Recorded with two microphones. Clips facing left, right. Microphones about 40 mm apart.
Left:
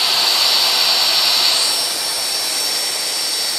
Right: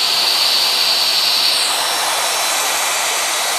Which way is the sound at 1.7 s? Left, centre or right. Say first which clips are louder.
Right 5 dB; right.